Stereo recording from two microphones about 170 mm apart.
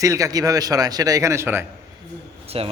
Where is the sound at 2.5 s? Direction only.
35° right (ahead or behind).